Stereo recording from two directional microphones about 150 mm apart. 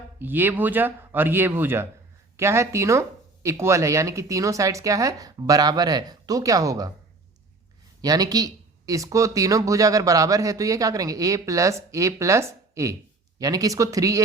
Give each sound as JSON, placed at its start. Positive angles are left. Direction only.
{"t": 0.2, "sound": "speech", "side_deg": -15}
{"t": 8.0, "sound": "speech", "side_deg": -25}